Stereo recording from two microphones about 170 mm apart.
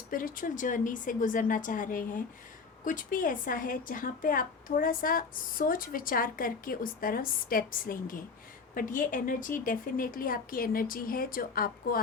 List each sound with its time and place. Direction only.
0.1 s a woman's voice: 55° left (ahead or behind)